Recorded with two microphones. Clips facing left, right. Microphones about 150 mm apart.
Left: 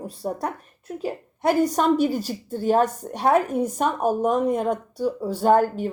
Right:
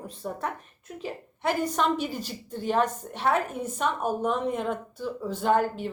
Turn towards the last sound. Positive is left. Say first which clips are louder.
# left 6 dB
turn(degrees=45)  # may be behind; listen again after turning